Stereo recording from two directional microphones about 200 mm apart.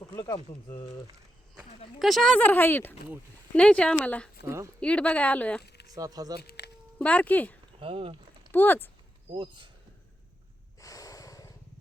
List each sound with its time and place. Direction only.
0.1 s speech: 20° left (ahead or behind)
2.0 s speech: centre (ahead or behind)
4.4 s speech: 15° right (ahead or behind)
4.8 s speech: 5° left (ahead or behind)
5.6 s a sound: 55° left (ahead or behind)
5.9 s speech: 20° right (ahead or behind)
7.0 s speech: 5° left (ahead or behind)
7.8 s speech: 25° right (ahead or behind)
8.5 s speech: 10° left (ahead or behind)
9.3 s speech: 25° right (ahead or behind)
10.8 s snort: 15° left (ahead or behind)